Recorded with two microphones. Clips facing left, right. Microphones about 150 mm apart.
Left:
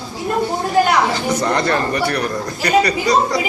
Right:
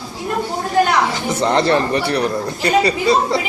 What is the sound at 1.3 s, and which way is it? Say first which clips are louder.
A man's voice: right 5 dB; 25° right (ahead or behind).